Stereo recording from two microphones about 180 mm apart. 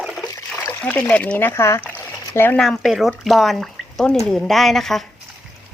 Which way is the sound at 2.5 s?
Centre (ahead or behind).